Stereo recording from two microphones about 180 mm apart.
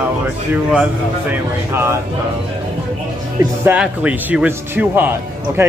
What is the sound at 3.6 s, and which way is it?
Speech, 10° right (ahead or behind).